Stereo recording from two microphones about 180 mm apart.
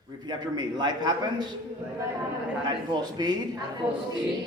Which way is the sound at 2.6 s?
25° right (ahead or behind).